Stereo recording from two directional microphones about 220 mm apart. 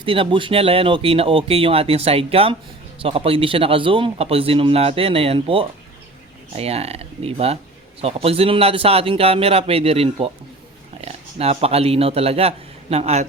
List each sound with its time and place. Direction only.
0.0 s speech: 25° right (ahead or behind)